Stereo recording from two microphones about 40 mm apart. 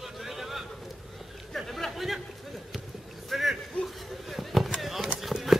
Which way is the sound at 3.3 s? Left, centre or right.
Centre.